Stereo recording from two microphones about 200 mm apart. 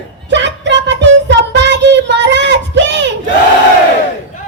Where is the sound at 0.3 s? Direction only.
60° right (ahead or behind).